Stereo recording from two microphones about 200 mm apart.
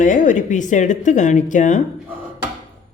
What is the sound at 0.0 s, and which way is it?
Speech, 40° left (ahead or behind).